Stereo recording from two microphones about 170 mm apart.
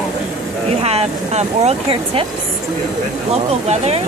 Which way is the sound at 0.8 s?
40° right (ahead or behind).